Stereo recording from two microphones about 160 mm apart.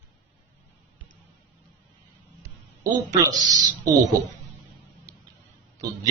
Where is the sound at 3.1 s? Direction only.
25° right (ahead or behind).